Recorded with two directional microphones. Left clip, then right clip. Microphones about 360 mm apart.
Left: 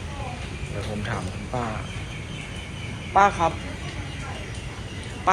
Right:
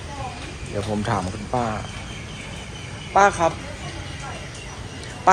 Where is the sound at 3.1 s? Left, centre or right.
Centre.